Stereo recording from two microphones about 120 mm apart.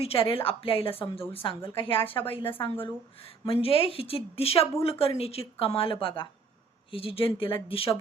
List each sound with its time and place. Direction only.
0.0 s a woman's voice: 50° left (ahead or behind)
3.4 s a woman's voice: 50° left (ahead or behind)